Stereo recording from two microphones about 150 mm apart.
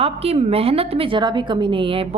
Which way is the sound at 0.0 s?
40° right (ahead or behind).